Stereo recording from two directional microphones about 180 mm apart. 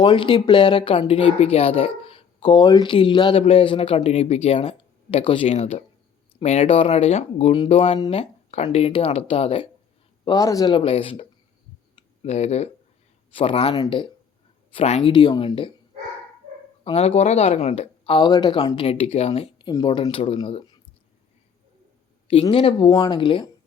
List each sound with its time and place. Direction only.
0.0 s speech: 25° left (ahead or behind)
10.2 s speech: 20° left (ahead or behind)
11.9 s a sound: 35° left (ahead or behind)
13.3 s speech: 30° left (ahead or behind)
16.8 s speech: 35° left (ahead or behind)
22.3 s speech: 30° left (ahead or behind)